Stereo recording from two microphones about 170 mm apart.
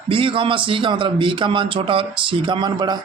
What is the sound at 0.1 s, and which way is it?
A man's voice, 30° right (ahead or behind).